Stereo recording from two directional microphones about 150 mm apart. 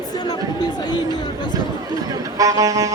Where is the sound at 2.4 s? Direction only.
20° right (ahead or behind).